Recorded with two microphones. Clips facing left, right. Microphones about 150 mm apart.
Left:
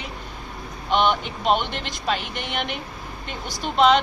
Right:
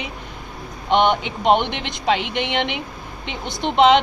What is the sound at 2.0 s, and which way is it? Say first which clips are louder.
Speech: right 7 dB; 70° right (ahead or behind).